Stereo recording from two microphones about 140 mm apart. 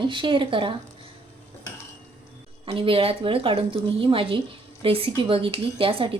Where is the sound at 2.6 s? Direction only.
40° right (ahead or behind).